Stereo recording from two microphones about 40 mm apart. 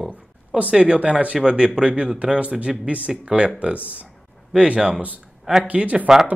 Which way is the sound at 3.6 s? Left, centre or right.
Right.